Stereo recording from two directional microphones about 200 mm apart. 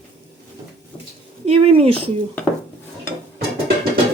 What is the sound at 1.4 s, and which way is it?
Speech, 30° right (ahead or behind).